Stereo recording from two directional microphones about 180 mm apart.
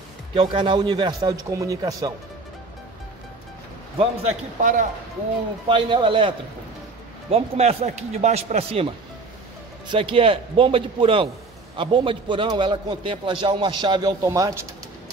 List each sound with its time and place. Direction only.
0.3 s a man's voice: 30° right (ahead or behind)
4.0 s a man's voice: 40° right (ahead or behind)
5.7 s a man's voice: 25° right (ahead or behind)
9.8 s a man's voice: 30° right (ahead or behind)